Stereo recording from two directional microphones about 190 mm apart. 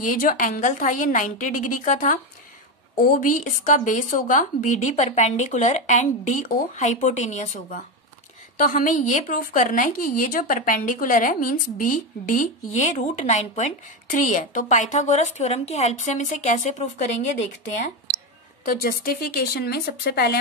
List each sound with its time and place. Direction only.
0.0 s speech: 45° left (ahead or behind)
18.7 s speech: 50° left (ahead or behind)